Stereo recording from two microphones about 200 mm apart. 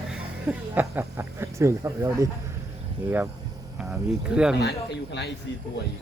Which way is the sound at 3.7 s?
Centre (ahead or behind).